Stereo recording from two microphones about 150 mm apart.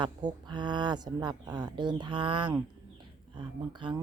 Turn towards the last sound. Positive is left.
turn(degrees=-30)  # may be behind; listen again after turning